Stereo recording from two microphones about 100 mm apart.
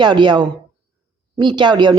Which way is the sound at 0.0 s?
50° right (ahead or behind).